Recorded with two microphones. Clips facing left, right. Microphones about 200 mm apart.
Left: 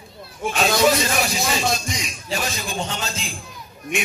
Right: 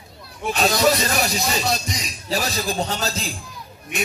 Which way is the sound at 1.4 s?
40° right (ahead or behind).